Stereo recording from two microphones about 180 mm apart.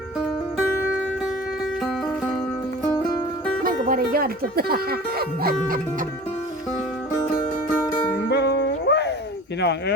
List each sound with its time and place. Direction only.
0.5 s music: 5° right (ahead or behind)
2.9 s music: 5° left (ahead or behind)
3.6 s speech: 55° right (ahead or behind)
8.3 s music: 65° left (ahead or behind)
9.6 s speech: 70° left (ahead or behind)